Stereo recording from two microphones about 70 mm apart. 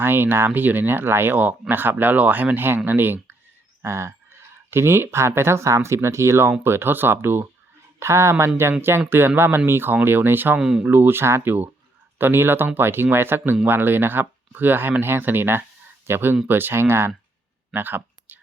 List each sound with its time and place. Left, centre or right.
0.0 s speech: right
3.8 s speech: right
10.6 s speech: centre
10.8 s speech: right
17.7 s a sound: right